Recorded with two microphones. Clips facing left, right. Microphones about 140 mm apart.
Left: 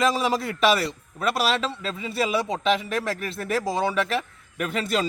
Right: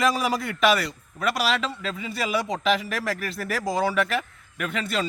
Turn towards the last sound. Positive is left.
turn(degrees=35)  # may be behind; listen again after turning